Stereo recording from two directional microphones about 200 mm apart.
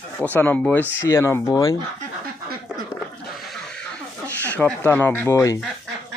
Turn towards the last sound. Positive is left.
turn(degrees=15)  # may be behind; listen again after turning